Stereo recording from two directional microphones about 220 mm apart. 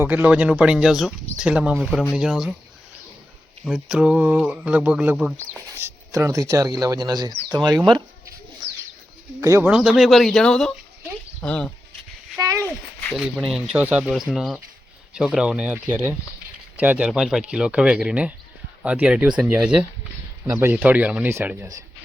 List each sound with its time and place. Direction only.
0.0 s speech: 10° right (ahead or behind)
3.6 s speech: 5° right (ahead or behind)
9.4 s speech: 15° right (ahead or behind); by 11.7 s 5° left (ahead or behind)
12.4 s a sound: 15° right (ahead or behind)
12.6 s speech: 5° left (ahead or behind); by 21.8 s 10° right (ahead or behind)